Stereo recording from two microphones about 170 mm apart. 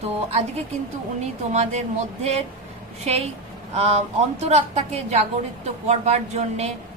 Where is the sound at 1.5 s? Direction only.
40° right (ahead or behind).